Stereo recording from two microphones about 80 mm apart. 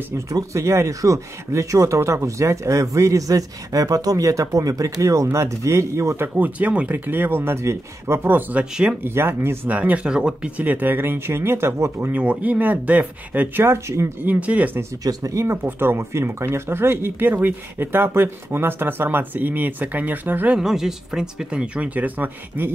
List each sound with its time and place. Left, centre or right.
0.3 s speech: right
12.1 s speech: centre; by 14.1 s right
14.2 s speech: centre
15.0 s speech: right
20.5 s speech: centre; by 22.8 s right